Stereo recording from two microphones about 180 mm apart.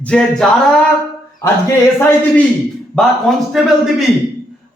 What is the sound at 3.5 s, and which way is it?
Speech, centre (ahead or behind).